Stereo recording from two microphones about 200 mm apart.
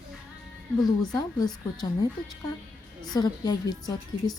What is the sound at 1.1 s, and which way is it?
Speech, 20° left (ahead or behind).